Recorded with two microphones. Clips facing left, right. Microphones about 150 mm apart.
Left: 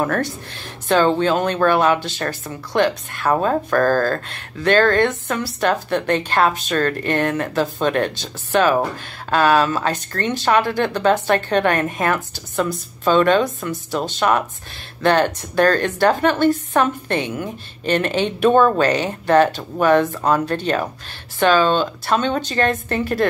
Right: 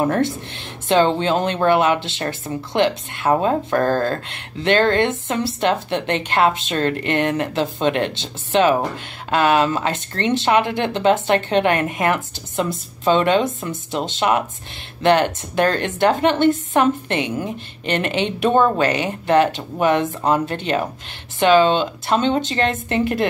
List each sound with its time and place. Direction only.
0.0 s speech: 25° right (ahead or behind)